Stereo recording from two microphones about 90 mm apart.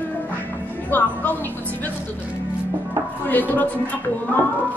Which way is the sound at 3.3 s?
20° left (ahead or behind).